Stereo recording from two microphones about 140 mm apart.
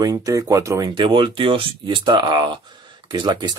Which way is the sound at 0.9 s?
35° right (ahead or behind).